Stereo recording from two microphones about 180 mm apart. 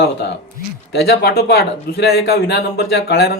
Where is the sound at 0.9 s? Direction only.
60° left (ahead or behind).